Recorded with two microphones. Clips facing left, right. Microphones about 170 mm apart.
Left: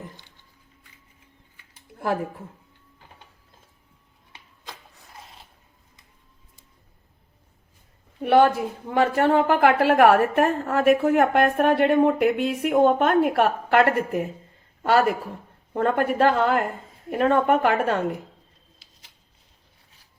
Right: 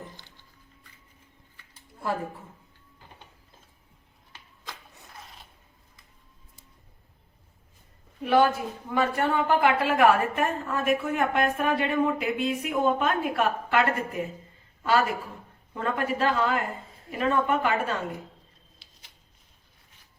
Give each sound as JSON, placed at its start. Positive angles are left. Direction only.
{"t": 8.2, "sound": "a man's voice", "side_deg": 60}